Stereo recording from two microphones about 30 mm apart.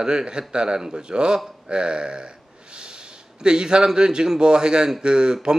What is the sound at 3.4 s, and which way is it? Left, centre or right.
Speech, right.